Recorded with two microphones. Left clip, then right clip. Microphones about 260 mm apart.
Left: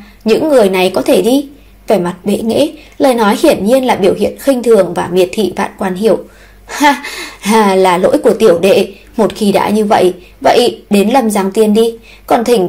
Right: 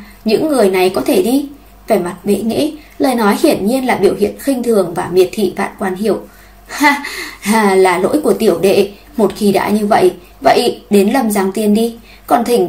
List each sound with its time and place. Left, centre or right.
0.2 s a woman's voice: left